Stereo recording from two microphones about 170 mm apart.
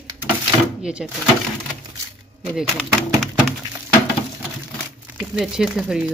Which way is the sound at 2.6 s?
Centre (ahead or behind).